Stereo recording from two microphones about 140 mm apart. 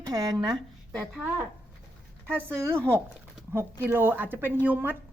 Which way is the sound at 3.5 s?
20° right (ahead or behind).